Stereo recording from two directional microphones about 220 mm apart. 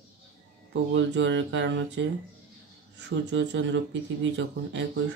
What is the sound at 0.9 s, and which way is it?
Speech, 55° right (ahead or behind).